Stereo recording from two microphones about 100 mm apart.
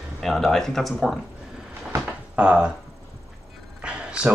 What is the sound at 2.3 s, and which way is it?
Speech, 10° right (ahead or behind).